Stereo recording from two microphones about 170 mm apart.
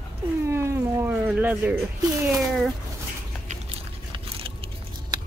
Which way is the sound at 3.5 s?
35° right (ahead or behind).